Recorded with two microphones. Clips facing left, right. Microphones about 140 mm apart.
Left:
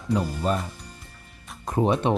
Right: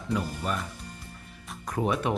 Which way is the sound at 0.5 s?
30° left (ahead or behind).